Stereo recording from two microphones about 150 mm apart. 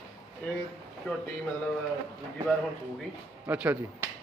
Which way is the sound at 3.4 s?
10° right (ahead or behind).